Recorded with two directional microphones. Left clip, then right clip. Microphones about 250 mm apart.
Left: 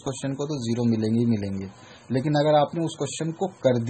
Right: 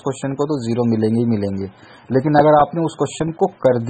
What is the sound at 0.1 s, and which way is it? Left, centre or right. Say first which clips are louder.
Speech: right 8 dB; centre.